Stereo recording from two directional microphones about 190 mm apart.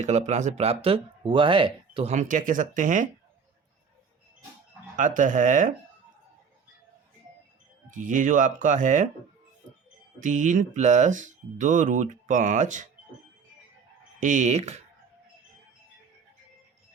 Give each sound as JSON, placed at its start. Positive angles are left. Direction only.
{"t": 0.0, "sound": "speech", "side_deg": -40}
{"t": 2.1, "sound": "speech", "side_deg": -45}
{"t": 4.9, "sound": "speech", "side_deg": -40}
{"t": 7.9, "sound": "speech", "side_deg": -45}
{"t": 10.2, "sound": "speech", "side_deg": -40}
{"t": 14.2, "sound": "speech", "side_deg": -40}